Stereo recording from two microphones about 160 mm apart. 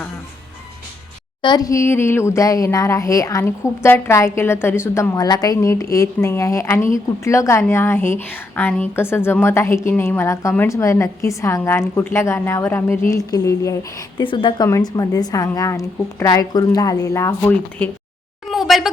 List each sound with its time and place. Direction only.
1.4 s a woman's voice: 25° left (ahead or behind)
14.2 s a woman's voice: 30° left (ahead or behind); by 17.8 s 10° left (ahead or behind)
18.4 s a sound: centre (ahead or behind)